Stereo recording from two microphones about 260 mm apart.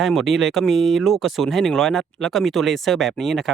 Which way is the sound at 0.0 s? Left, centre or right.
Centre.